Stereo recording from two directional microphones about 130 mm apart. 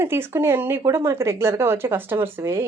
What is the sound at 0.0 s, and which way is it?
Speech, 20° right (ahead or behind).